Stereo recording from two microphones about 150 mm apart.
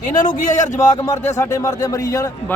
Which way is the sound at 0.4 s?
55° left (ahead or behind).